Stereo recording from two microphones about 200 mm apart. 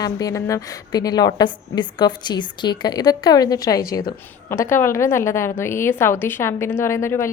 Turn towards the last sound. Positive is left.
turn(degrees=15)  # may be behind; listen again after turning